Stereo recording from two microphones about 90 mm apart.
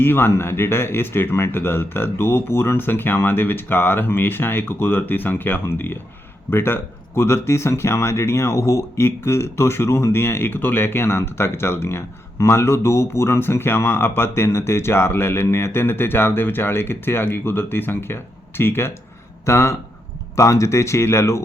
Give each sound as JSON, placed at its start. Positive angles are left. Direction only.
{"t": 0.0, "sound": "speech", "side_deg": 25}